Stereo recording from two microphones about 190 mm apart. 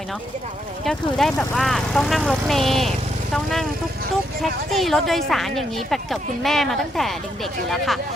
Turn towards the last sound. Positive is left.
turn(degrees=0)  # may be behind; listen again after turning